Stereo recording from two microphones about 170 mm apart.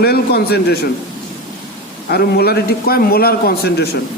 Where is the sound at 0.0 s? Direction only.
70° left (ahead or behind).